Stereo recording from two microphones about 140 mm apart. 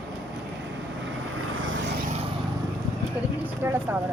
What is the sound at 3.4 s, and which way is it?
Vehicle, 15° right (ahead or behind).